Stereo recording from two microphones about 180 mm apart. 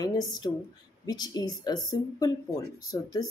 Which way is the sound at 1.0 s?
20° left (ahead or behind).